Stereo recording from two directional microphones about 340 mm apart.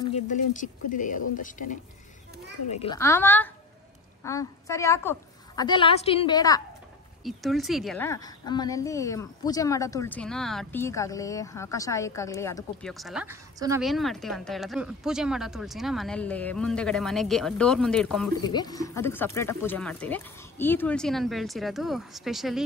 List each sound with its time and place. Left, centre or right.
0.1 s a woman's voice: left
7.2 s a woman's voice: centre